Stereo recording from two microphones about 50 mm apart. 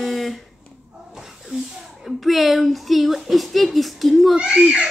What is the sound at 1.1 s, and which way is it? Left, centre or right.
Snake, centre.